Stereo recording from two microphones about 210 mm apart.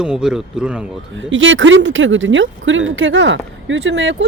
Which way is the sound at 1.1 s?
65° right (ahead or behind).